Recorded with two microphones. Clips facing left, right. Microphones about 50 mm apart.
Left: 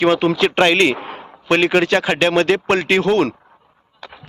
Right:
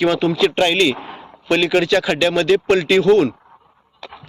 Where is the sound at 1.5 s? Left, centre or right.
Left.